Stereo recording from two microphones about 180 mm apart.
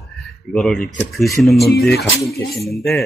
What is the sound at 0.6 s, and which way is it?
Speech, 5° left (ahead or behind).